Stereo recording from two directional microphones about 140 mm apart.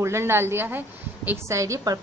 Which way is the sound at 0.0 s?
20° right (ahead or behind).